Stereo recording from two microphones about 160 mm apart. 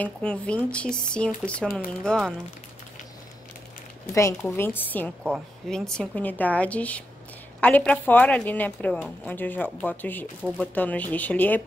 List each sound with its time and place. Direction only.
0.0 s a woman's voice: 5° left (ahead or behind)
4.1 s a woman's voice: 20° left (ahead or behind)
5.2 s a woman's voice: centre (ahead or behind)